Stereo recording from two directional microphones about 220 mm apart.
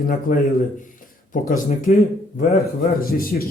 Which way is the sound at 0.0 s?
40° left (ahead or behind).